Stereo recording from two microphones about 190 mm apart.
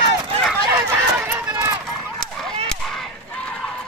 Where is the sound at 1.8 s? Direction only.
Centre (ahead or behind).